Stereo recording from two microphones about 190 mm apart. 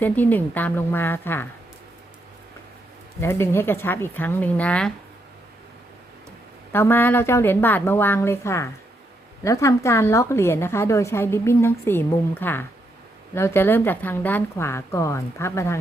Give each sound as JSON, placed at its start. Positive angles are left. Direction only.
{"t": 0.0, "sound": "a woman's voice", "side_deg": 10}
{"t": 3.2, "sound": "a woman's voice", "side_deg": 15}
{"t": 6.7, "sound": "a woman's voice", "side_deg": 10}